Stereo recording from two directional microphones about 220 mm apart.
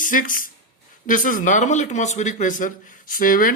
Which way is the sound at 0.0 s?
40° left (ahead or behind).